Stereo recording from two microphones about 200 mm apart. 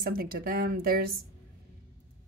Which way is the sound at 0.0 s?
50° right (ahead or behind).